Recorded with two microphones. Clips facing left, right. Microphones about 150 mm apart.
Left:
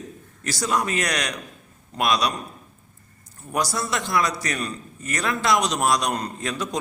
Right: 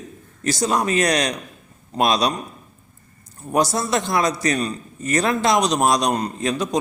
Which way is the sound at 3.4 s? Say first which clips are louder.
Right 6 dB; 25° right (ahead or behind).